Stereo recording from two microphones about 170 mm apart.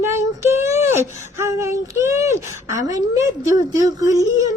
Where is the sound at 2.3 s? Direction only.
45° left (ahead or behind).